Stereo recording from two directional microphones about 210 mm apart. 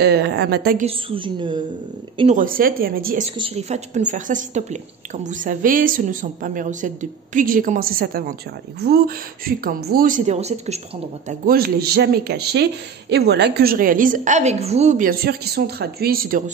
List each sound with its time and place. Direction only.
0.0 s speech: 50° right (ahead or behind)
0.8 s a woman's voice: 25° right (ahead or behind)
2.1 s speech: 35° right (ahead or behind)
3.3 s a woman's voice: 25° right (ahead or behind)
11.2 s a woman's voice: 45° right (ahead or behind)